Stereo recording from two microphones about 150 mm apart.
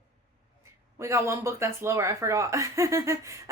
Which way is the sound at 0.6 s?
20° right (ahead or behind).